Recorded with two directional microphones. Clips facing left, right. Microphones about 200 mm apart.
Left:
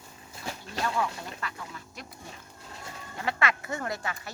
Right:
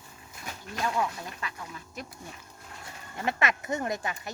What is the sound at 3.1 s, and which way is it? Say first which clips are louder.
Speech: right 1 dB; 20° right (ahead or behind).